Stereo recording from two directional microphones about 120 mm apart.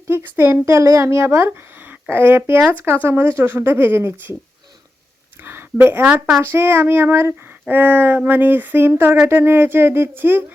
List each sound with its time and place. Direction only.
0.1 s speech: 20° right (ahead or behind)
5.4 s a woman's voice: 20° right (ahead or behind)